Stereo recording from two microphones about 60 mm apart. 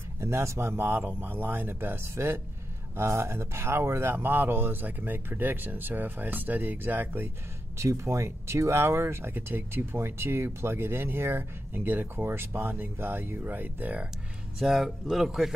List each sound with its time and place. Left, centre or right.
0.2 s speech: right
7.7 s speech: right
14.6 s speech: centre